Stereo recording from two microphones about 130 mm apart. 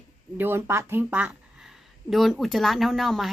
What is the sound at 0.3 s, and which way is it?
Speech, 15° right (ahead or behind).